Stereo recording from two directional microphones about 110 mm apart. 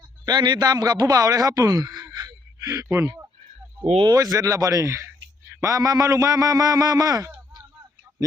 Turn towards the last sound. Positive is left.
turn(degrees=-30)  # may be behind; listen again after turning